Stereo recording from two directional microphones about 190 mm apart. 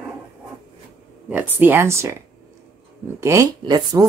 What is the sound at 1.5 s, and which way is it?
Speech, 10° right (ahead or behind).